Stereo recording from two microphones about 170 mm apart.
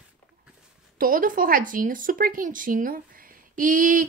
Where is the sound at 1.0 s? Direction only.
55° right (ahead or behind).